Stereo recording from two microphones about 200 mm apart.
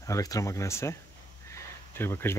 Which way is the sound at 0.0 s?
15° left (ahead or behind).